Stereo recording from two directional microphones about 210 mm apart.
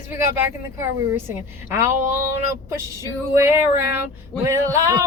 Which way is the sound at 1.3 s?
10° right (ahead or behind).